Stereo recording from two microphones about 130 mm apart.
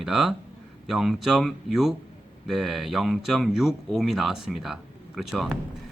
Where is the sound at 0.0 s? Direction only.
5° right (ahead or behind).